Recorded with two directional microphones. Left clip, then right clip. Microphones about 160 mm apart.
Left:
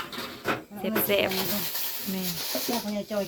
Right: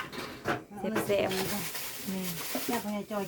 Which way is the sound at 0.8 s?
5° left (ahead or behind).